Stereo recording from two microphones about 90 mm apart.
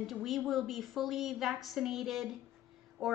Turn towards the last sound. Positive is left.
turn(degrees=0)  # may be behind; listen again after turning